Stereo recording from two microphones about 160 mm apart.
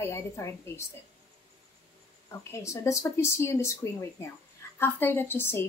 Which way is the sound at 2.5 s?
20° left (ahead or behind).